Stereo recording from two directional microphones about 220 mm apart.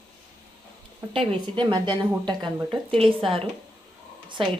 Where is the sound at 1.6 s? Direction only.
20° right (ahead or behind).